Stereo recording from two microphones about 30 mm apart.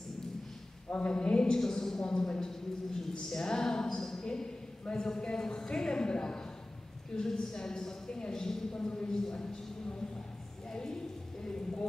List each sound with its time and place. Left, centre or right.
0.9 s a woman's voice: left
8.8 s a woman's voice: left
10.7 s a sound: left